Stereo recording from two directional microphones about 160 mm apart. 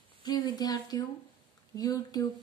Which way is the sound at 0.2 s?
25° left (ahead or behind).